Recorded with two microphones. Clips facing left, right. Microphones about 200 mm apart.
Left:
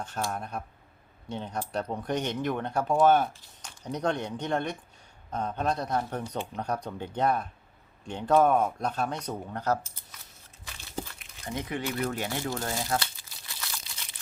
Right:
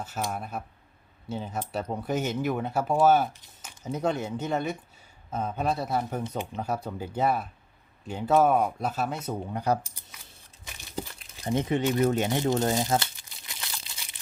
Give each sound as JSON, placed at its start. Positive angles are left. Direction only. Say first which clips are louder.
{"t": 0.3, "sound": "speech", "louder": "right 1 dB", "side_deg": -5}
{"t": 11.2, "sound": "speech", "louder": "right 7 dB", "side_deg": -25}